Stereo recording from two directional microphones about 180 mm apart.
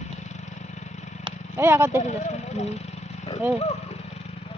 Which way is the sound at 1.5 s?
15° right (ahead or behind).